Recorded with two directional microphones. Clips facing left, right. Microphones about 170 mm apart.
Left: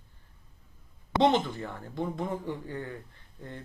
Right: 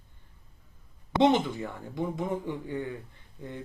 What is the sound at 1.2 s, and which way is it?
Speech, 10° right (ahead or behind).